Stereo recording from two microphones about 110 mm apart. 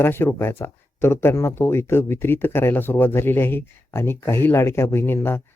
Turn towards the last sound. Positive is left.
turn(degrees=20)  # may be behind; listen again after turning